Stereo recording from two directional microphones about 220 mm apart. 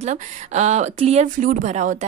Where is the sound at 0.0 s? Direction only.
30° right (ahead or behind).